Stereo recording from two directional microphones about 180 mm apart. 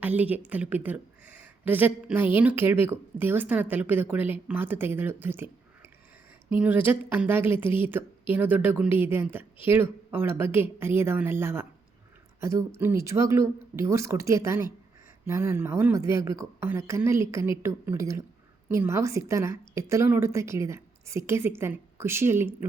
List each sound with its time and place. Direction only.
0.0 s a woman's voice: 10° right (ahead or behind)
6.5 s a woman's voice: 10° right (ahead or behind)